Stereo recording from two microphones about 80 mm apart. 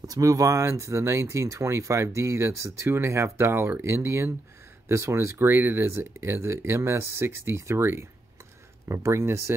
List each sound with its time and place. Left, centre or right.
0.0 s speech: right